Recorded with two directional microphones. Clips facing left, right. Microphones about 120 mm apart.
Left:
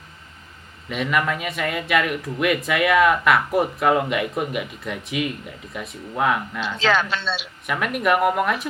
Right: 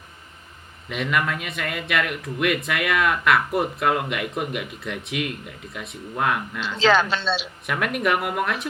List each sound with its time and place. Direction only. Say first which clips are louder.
0.9 s speech: left 2 dB; centre (ahead or behind)
6.7 s speech: right 3 dB; 30° right (ahead or behind)
7.7 s speech: left 2 dB; centre (ahead or behind)